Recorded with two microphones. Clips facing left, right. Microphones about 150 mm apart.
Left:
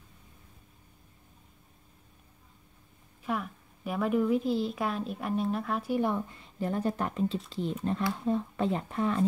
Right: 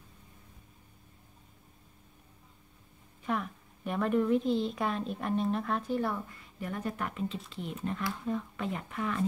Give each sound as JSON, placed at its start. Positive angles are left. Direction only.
{"t": 3.3, "sound": "a woman's voice", "side_deg": 5}